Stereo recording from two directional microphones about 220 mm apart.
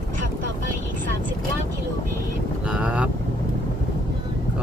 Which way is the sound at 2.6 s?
5° right (ahead or behind).